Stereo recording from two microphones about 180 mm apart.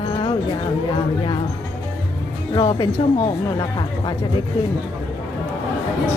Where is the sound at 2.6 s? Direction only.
25° left (ahead or behind).